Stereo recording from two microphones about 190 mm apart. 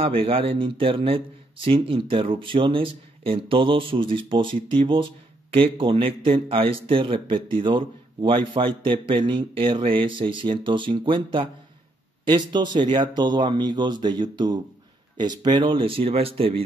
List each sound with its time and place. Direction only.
0.0 s speech: 30° right (ahead or behind)